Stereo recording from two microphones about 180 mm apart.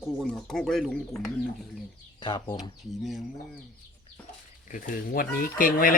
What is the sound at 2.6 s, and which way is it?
Speech, centre (ahead or behind).